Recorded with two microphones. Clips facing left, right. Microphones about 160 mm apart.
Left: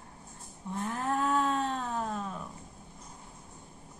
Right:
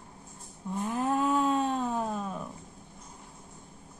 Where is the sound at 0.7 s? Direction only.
15° right (ahead or behind).